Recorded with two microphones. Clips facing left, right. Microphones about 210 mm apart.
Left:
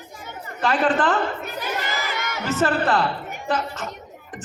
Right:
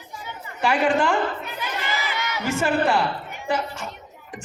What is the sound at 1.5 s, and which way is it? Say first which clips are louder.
Crowd: left 2 dB; 45° left (ahead or behind).